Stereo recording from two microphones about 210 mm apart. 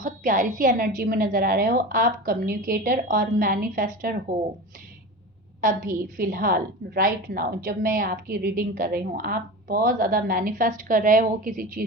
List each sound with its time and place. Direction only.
0.0 s a woman's voice: 40° right (ahead or behind)
5.5 s a woman's voice: 40° right (ahead or behind)